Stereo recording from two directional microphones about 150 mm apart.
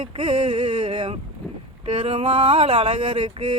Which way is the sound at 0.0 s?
35° right (ahead or behind).